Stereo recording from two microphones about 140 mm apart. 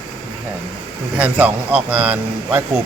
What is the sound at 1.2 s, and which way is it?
A man's voice, 10° right (ahead or behind).